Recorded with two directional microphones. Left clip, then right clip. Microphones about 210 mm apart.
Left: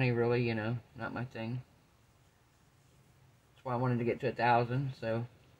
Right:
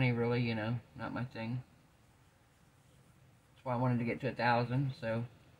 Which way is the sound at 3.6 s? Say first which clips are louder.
Left 2 dB; 40° left (ahead or behind).